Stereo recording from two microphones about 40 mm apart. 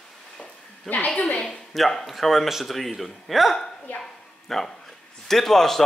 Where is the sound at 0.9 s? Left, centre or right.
Centre.